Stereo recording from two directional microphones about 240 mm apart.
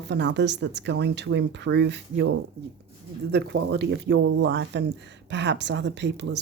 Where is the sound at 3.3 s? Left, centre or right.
Right.